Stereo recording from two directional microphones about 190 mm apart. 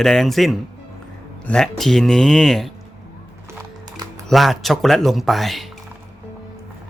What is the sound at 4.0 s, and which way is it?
Music, 20° right (ahead or behind).